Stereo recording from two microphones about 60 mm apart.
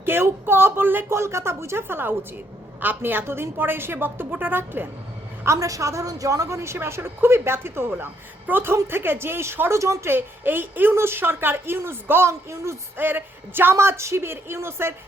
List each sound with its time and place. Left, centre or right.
0.0 s a woman's voice: right
1.2 s a woman's voice: right
5.5 s a woman's voice: right
10.1 s a woman's voice: right
12.3 s a woman's voice: right
13.0 s a woman's voice: right
13.7 s a woman's voice: right